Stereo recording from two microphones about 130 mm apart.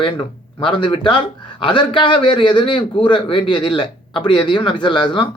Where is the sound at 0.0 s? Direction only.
40° left (ahead or behind).